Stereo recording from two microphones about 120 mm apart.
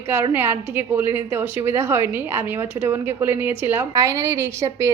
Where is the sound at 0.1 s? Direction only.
20° right (ahead or behind).